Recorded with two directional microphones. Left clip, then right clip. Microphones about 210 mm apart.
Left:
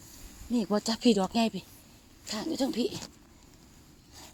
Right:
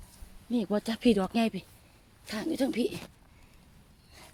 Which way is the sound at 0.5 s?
10° left (ahead or behind).